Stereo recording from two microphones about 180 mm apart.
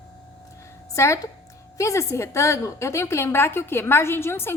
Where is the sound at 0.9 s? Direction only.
15° left (ahead or behind).